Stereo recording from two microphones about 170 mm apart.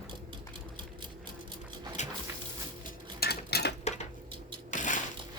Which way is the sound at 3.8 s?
40° left (ahead or behind).